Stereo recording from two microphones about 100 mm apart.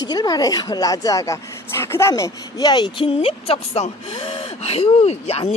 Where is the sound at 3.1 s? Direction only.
70° left (ahead or behind); by 5.5 s 90° left.